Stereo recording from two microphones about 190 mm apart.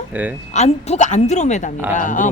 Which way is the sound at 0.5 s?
35° left (ahead or behind).